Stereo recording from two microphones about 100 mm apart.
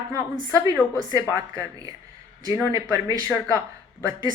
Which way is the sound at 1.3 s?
30° right (ahead or behind).